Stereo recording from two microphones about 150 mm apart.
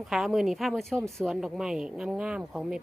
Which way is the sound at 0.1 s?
Centre (ahead or behind).